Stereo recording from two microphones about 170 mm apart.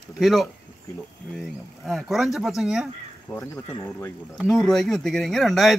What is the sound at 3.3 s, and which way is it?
Speech, 15° left (ahead or behind).